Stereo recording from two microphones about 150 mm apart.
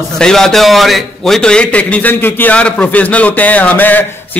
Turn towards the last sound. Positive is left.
turn(degrees=10)  # may be behind; listen again after turning